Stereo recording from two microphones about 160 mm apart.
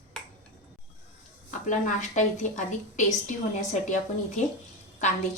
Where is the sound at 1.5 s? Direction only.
50° left (ahead or behind).